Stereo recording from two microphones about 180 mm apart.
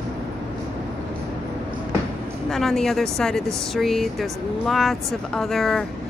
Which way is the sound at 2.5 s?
Centre (ahead or behind).